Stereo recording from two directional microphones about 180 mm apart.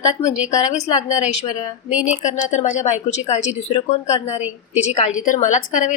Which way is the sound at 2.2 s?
40° left (ahead or behind).